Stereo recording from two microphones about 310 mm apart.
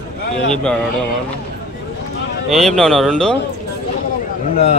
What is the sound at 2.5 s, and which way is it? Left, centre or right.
Speech, centre.